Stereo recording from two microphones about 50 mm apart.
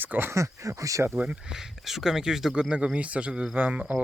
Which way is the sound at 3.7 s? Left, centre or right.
Right.